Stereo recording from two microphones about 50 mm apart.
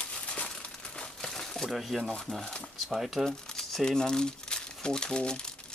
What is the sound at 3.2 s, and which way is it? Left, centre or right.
Speech, centre.